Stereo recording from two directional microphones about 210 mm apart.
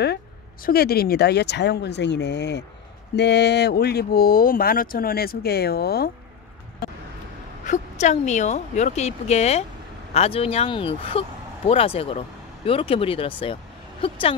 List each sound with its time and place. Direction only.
0.7 s speech: 50° left (ahead or behind)
7.6 s speech: 35° left (ahead or behind)